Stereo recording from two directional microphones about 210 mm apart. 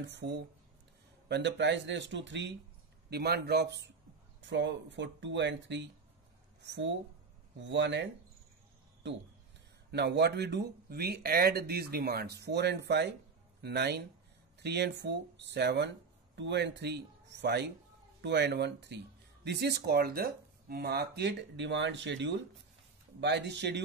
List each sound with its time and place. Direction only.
0.0 s speech: 55° right (ahead or behind)
9.8 s speech: 50° right (ahead or behind)